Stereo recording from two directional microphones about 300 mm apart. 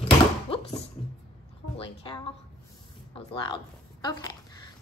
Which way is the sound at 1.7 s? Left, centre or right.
Centre.